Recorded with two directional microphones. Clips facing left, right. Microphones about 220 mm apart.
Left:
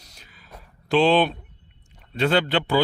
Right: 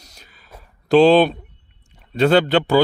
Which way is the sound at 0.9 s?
40° right (ahead or behind).